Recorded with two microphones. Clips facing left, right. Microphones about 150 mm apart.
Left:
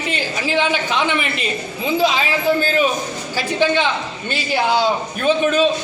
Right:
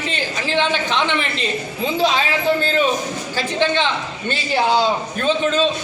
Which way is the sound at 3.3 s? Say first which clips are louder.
Left 2 dB; 10° left (ahead or behind).